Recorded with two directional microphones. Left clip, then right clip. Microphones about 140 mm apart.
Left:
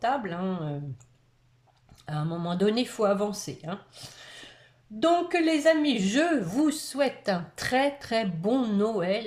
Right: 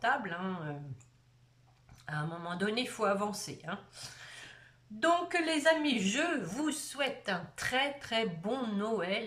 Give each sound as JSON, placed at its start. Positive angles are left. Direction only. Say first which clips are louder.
{"t": 0.0, "sound": "speech", "louder": "left 4 dB", "side_deg": 30}
{"t": 2.0, "sound": "speech", "louder": "left 5 dB", "side_deg": 30}